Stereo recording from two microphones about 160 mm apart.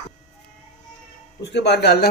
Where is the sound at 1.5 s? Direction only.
90° left.